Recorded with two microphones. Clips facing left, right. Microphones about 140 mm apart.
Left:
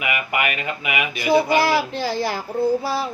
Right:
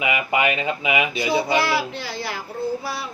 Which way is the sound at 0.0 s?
25° right (ahead or behind).